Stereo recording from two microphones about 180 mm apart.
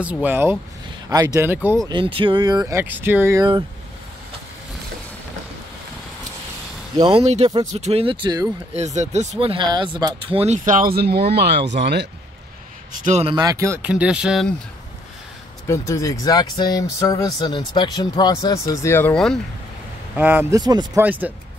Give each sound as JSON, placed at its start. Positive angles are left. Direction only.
{"t": 0.0, "sound": "speech", "side_deg": -10}
{"t": 1.9, "sound": "speech", "side_deg": -30}
{"t": 7.0, "sound": "speech", "side_deg": -35}
{"t": 8.7, "sound": "speech", "side_deg": -40}
{"t": 13.0, "sound": "speech", "side_deg": -40}
{"t": 13.3, "sound": "speech", "side_deg": -20}
{"t": 15.6, "sound": "speech", "side_deg": 15}
{"t": 20.2, "sound": "speech", "side_deg": -10}
{"t": 20.6, "sound": "speech", "side_deg": -20}
{"t": 21.0, "sound": "speech", "side_deg": -10}